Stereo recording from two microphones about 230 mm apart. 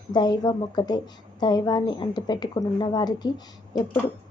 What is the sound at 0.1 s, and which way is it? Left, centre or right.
A woman's voice, centre.